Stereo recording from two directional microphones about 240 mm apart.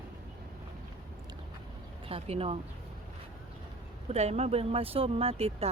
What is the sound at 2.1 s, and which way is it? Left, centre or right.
Speech, right.